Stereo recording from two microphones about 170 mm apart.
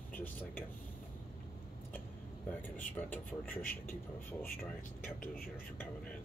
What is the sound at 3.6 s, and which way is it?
Speech, 55° left (ahead or behind).